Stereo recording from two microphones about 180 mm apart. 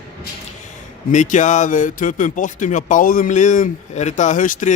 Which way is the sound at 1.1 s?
45° left (ahead or behind).